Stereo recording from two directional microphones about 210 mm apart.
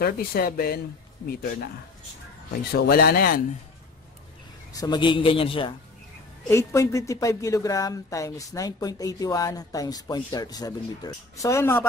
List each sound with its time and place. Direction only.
0.0 s speech: 45° left (ahead or behind)
4.7 s a man's voice: 20° left (ahead or behind)
6.5 s speech: 15° left (ahead or behind)